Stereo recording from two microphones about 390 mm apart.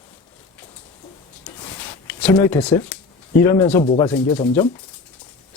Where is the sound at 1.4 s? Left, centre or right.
Centre.